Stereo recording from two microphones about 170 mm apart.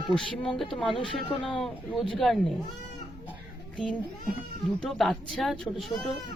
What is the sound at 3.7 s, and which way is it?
Speech, 5° left (ahead or behind).